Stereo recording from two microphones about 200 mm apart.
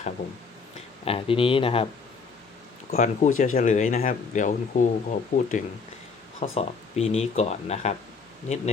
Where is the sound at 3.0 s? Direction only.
40° left (ahead or behind).